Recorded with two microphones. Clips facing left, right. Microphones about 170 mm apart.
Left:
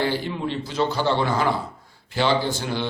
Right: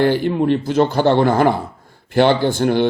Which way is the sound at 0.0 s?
55° right (ahead or behind).